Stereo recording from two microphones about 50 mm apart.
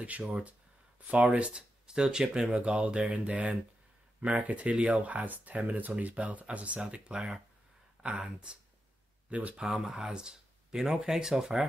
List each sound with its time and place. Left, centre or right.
0.3 s speech: right
1.5 s speech: centre
9.3 s speech: right
9.6 s speech: centre